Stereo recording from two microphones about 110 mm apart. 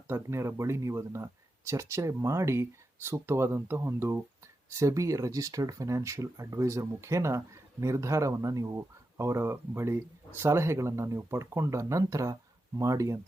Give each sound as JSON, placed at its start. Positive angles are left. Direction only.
{"t": 0.1, "sound": "speech", "side_deg": -25}